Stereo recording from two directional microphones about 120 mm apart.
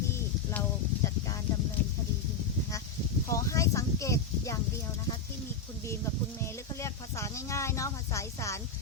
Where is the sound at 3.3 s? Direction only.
25° left (ahead or behind).